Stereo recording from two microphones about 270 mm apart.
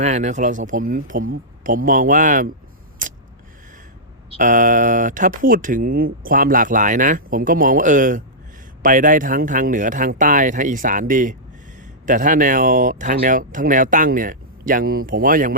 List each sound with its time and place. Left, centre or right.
0.0 s speech: right
4.3 s speech: right